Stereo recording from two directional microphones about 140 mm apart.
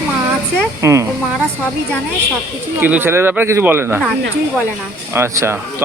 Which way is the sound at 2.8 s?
15° right (ahead or behind).